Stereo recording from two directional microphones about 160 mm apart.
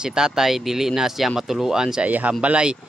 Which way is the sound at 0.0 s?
5° right (ahead or behind).